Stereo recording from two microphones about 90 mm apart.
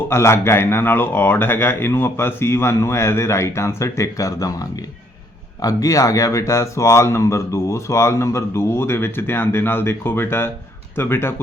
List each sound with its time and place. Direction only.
0.1 s speech: 30° left (ahead or behind)